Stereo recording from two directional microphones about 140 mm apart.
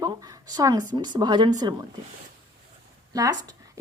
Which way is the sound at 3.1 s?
25° right (ahead or behind).